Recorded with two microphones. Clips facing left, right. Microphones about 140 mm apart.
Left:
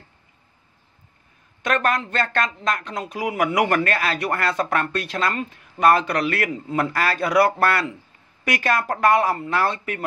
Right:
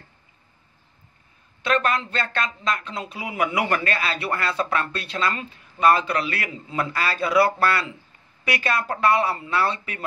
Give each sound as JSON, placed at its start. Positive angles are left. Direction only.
{"t": 1.6, "sound": "speech", "side_deg": 50}